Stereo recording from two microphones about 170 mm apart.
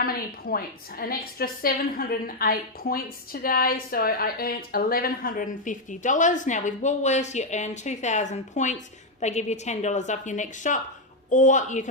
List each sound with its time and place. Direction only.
0.0 s a woman's voice: 60° left (ahead or behind)